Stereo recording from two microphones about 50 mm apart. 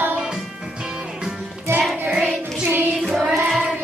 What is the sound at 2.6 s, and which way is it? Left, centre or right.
Music, right.